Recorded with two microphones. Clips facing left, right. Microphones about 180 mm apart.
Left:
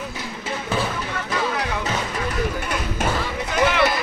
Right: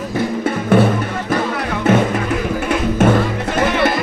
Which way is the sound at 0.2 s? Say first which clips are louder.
Right 11 dB; 60° right (ahead or behind).